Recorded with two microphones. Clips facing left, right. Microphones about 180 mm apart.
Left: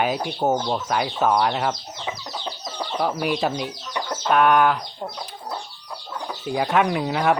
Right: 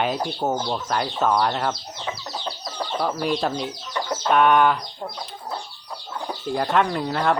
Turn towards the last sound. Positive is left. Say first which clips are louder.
# left 2 dB
turn(degrees=10)  # may be behind; listen again after turning